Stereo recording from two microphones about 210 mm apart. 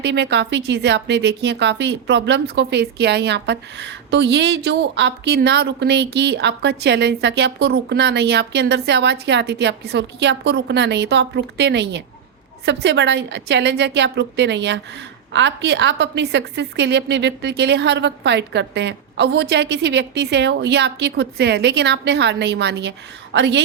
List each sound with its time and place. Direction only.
0.0 s speech: 55° right (ahead or behind)